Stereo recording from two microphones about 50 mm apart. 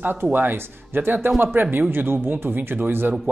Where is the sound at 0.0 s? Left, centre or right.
Right.